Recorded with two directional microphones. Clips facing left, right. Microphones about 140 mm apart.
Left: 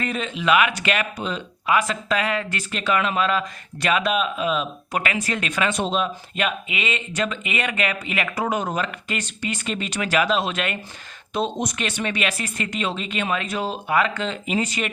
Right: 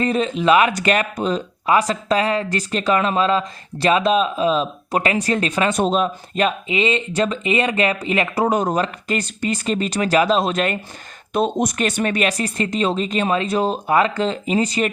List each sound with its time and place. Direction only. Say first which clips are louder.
0.0 s speech: right 7 dB; 35° right (ahead or behind)
11.3 s speech: right 6 dB; 50° right (ahead or behind); by 14.8 s 35° right (ahead or behind)